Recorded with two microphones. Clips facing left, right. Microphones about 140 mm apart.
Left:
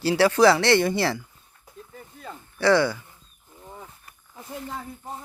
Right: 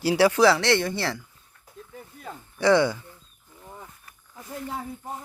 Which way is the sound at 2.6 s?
20° right (ahead or behind).